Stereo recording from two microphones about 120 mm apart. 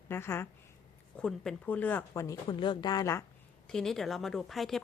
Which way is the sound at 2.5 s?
40° left (ahead or behind).